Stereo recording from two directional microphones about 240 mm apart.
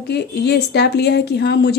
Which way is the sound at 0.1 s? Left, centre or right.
Left.